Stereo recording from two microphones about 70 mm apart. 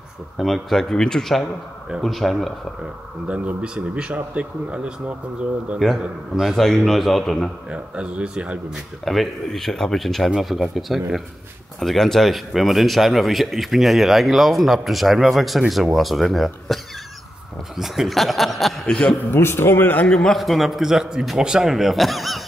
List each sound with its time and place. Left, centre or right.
0.4 s a man's voice: centre
3.3 s speech: centre
5.9 s speech: centre
6.5 s a man's voice: centre
7.7 s speech: centre
9.0 s a man's voice: centre
19.3 s a man's voice: left
20.1 s a man's voice: centre